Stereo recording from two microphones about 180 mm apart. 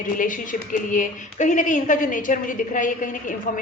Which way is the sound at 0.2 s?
45° left (ahead or behind).